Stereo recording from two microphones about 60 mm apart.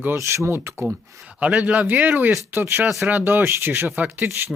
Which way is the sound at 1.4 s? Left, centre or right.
Centre.